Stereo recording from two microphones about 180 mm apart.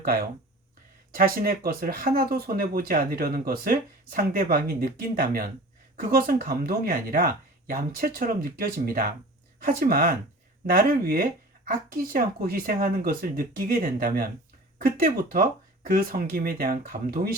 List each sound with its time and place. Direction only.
0.0 s speech: 55° right (ahead or behind)